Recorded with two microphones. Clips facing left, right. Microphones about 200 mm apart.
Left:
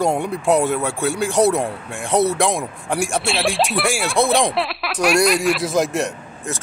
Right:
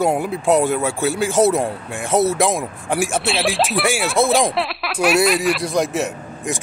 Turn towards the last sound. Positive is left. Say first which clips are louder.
# right 3 dB
turn(degrees=-15)  # may be behind; listen again after turning